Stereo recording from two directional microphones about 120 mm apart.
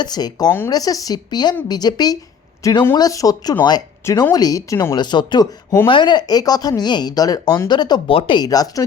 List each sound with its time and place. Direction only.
0.0 s speech: 35° left (ahead or behind)
4.9 s speech: 40° left (ahead or behind)
8.4 s speech: 30° left (ahead or behind)